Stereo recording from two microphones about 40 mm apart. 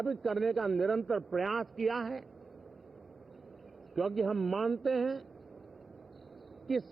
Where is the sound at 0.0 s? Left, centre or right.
Centre.